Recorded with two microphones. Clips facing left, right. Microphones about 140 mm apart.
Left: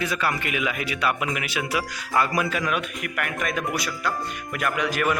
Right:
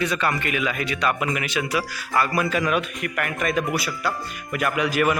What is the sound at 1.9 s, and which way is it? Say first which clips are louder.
Speech: left 1 dB; 20° left (ahead or behind).